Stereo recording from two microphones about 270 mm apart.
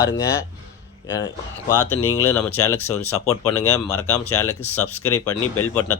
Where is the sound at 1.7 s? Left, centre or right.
Centre.